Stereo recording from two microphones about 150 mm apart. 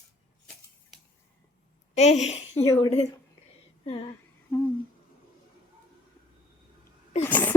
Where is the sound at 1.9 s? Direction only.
45° left (ahead or behind).